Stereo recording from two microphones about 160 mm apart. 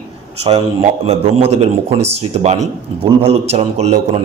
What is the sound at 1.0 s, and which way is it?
Speech, 40° right (ahead or behind).